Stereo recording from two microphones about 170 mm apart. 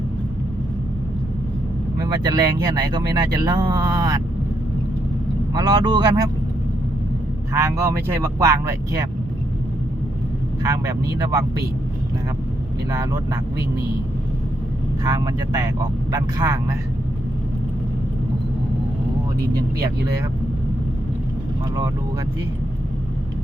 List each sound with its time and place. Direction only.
2.0 s speech: 25° right (ahead or behind)
5.5 s speech: 25° right (ahead or behind)
7.5 s speech: 15° right (ahead or behind)
10.6 s speech: 20° right (ahead or behind)
12.9 s speech: 20° right (ahead or behind)
15.0 s speech: 20° right (ahead or behind)